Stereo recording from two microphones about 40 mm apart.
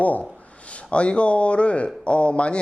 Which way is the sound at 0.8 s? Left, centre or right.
Left.